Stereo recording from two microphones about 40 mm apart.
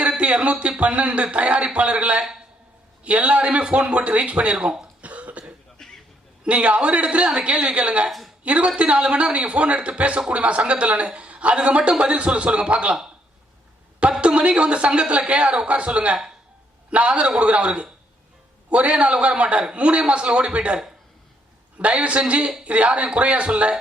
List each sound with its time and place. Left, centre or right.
0.2 s a man's voice: right
5.0 s cough: right
5.8 s a sound: centre
6.4 s a man's voice: right
14.2 s a woman's voice: right
21.8 s a man's voice: right